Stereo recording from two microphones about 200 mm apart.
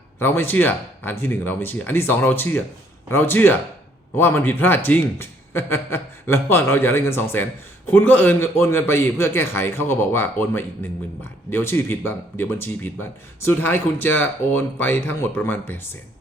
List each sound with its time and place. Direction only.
0.2 s speech: 10° left (ahead or behind)